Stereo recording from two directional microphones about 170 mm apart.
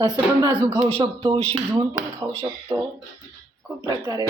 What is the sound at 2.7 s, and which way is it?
Speech, 25° right (ahead or behind).